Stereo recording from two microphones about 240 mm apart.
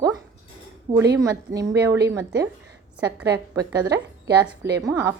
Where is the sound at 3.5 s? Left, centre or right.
Centre.